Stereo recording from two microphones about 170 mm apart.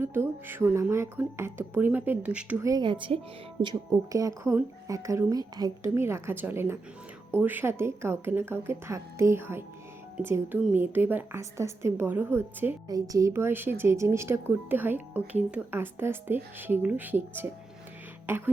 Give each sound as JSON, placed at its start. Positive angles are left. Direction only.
{"t": 0.0, "sound": "a woman's voice", "side_deg": -15}
{"t": 2.6, "sound": "a woman's voice", "side_deg": -25}
{"t": 18.3, "sound": "a woman's voice", "side_deg": -10}